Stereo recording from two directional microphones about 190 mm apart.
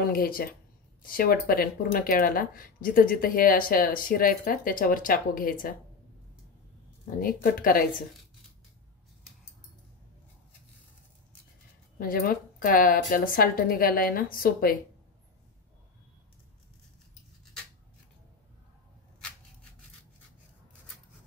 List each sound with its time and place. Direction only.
0.1 s speech: 50° left (ahead or behind)
7.2 s speech: 50° left (ahead or behind)
12.0 s speech: 50° left (ahead or behind)